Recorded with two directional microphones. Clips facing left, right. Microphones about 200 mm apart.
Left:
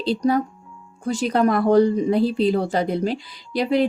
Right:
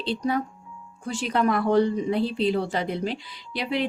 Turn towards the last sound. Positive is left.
turn(degrees=40)  # may be behind; listen again after turning